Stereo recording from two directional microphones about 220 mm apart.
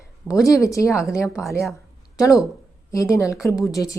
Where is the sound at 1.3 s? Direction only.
Centre (ahead or behind).